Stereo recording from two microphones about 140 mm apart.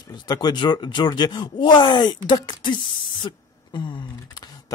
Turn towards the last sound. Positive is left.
turn(degrees=30)  # may be behind; listen again after turning